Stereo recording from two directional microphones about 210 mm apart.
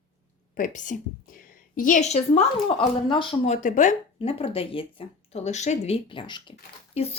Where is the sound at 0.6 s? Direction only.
35° left (ahead or behind).